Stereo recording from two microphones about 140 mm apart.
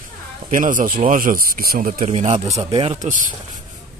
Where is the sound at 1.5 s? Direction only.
90° right.